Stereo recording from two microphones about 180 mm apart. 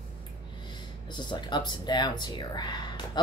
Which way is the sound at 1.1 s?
25° left (ahead or behind).